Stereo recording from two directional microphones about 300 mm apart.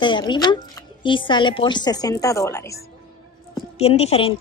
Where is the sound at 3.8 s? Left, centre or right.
Centre.